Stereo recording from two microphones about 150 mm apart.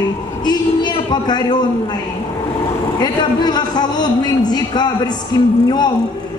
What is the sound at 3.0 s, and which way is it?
A woman's voice, 30° left (ahead or behind).